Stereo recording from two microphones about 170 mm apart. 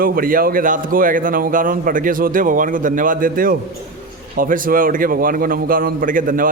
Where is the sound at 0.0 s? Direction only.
55° right (ahead or behind).